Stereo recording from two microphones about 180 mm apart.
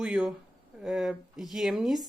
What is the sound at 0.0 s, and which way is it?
Speech, 5° right (ahead or behind).